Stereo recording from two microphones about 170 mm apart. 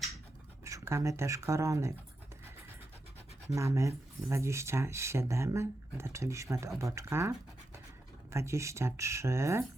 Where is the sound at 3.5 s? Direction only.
20° right (ahead or behind).